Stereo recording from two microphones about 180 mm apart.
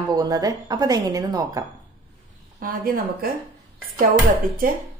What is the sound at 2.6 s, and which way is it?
Speech, 50° right (ahead or behind).